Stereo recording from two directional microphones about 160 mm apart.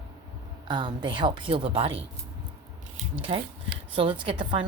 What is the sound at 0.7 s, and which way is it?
A woman's voice, 30° right (ahead or behind).